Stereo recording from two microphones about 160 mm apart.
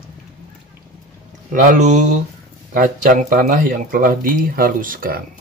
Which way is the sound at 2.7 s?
60° right (ahead or behind).